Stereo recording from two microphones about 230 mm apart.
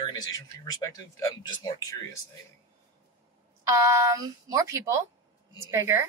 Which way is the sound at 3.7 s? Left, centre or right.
Centre.